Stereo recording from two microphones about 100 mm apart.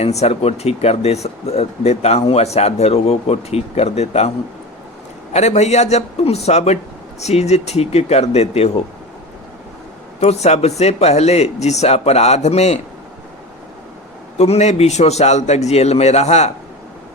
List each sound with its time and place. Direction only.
0.0 s speech: 90° left
5.3 s speech: 90° left
10.2 s speech: 90° left
14.3 s speech: 90° left